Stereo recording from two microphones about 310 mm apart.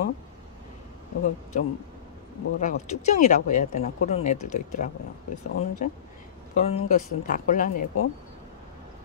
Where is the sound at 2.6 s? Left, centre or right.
Left.